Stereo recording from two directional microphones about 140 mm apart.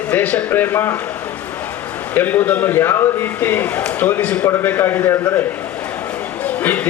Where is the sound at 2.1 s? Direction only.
15° left (ahead or behind).